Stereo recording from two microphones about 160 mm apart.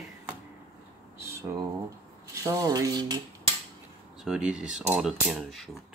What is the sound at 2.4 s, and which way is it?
Speech, 20° right (ahead or behind).